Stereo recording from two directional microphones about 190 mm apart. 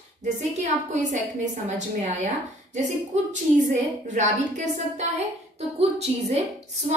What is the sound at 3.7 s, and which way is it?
A woman's voice, 40° right (ahead or behind).